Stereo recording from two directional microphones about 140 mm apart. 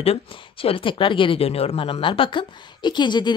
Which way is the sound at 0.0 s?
40° left (ahead or behind).